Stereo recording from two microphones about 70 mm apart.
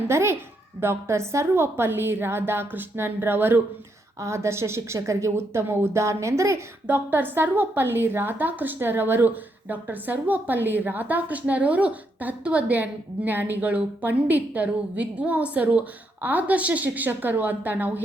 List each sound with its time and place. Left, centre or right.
0.1 s a woman's voice: right
4.2 s a woman's voice: right
6.8 s a woman's voice: right